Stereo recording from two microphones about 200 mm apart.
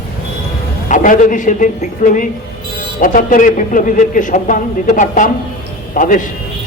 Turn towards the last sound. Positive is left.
turn(degrees=40)  # may be behind; listen again after turning